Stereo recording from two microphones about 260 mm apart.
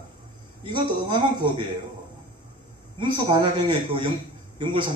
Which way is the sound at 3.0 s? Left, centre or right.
Centre.